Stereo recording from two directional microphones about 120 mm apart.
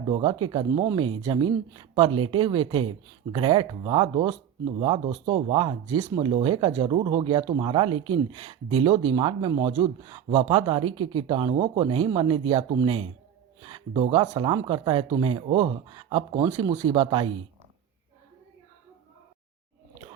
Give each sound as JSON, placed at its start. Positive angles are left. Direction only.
{"t": 0.1, "sound": "speech", "side_deg": -45}
{"t": 10.3, "sound": "speech", "side_deg": -45}
{"t": 13.6, "sound": "a sound", "side_deg": -40}
{"t": 14.0, "sound": "speech", "side_deg": -45}
{"t": 16.4, "sound": "speech", "side_deg": -30}
{"t": 17.0, "sound": "speech", "side_deg": -50}